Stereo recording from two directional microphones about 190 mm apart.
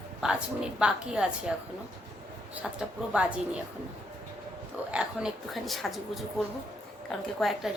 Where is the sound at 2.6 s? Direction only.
Centre (ahead or behind).